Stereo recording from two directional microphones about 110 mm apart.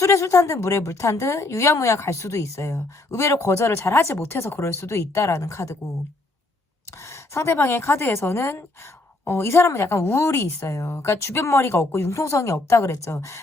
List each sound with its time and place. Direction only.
0.0 s speech: 25° left (ahead or behind)
7.0 s speech: 25° left (ahead or behind)